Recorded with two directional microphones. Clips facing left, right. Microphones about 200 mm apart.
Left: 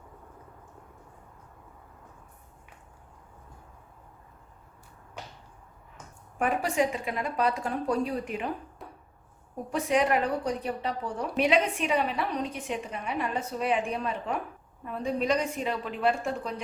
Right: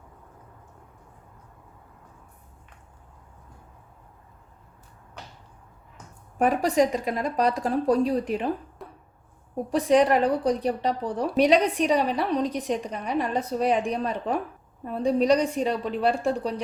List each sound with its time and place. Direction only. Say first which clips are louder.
6.4 s a woman's voice: right 5 dB; 40° right (ahead or behind)
8.8 s a sound: right 3 dB; centre (ahead or behind)
9.6 s a woman's voice: right 6 dB; 35° right (ahead or behind)